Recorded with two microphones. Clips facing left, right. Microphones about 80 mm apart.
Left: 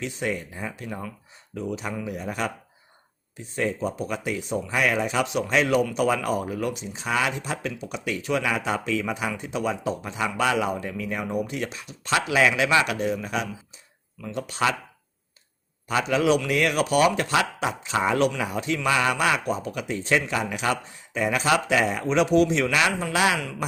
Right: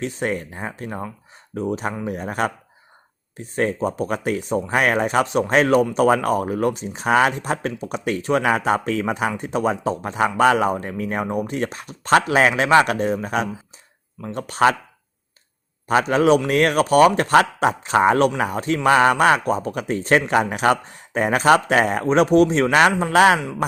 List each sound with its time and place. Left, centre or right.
0.0 s speech: right
15.9 s speech: right